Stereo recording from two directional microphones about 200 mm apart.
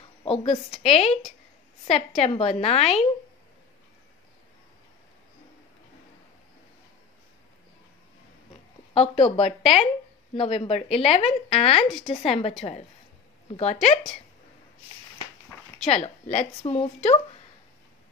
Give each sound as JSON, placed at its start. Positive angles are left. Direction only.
{"t": 0.3, "sound": "a woman's voice", "side_deg": 30}
{"t": 8.9, "sound": "a woman's voice", "side_deg": 30}
{"t": 15.8, "sound": "a woman's voice", "side_deg": 30}